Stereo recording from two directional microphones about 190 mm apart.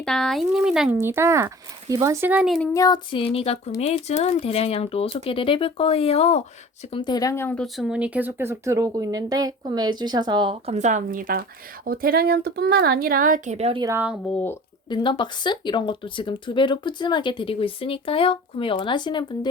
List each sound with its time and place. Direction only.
0.0 s speech: 5° left (ahead or behind)
2.7 s a woman's voice: 20° left (ahead or behind); by 13.8 s 35° right (ahead or behind)
13.8 s speech: 10° right (ahead or behind)
14.8 s speech: 25° left (ahead or behind)